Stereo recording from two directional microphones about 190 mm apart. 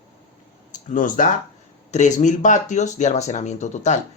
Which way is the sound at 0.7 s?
40° left (ahead or behind).